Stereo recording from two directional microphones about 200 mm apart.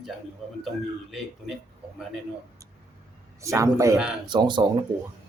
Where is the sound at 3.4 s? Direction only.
15° right (ahead or behind).